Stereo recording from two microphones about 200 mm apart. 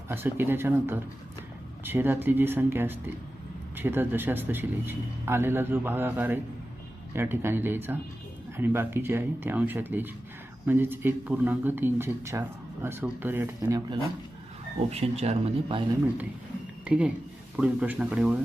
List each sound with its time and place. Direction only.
0.1 s speech: 10° right (ahead or behind)
14.8 s speech: 30° right (ahead or behind)
16.8 s speech: 5° right (ahead or behind)